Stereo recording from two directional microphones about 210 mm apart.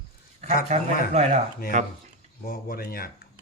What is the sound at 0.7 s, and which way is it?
Speech, 30° right (ahead or behind).